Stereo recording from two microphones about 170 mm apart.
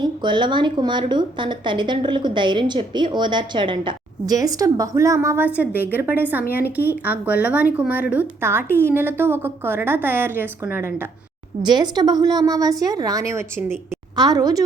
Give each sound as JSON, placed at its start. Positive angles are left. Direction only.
{"t": 0.0, "sound": "a woman's voice", "side_deg": -25}
{"t": 11.6, "sound": "a woman's voice", "side_deg": -25}